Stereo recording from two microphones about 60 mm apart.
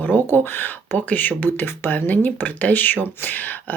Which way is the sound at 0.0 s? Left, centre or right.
Left.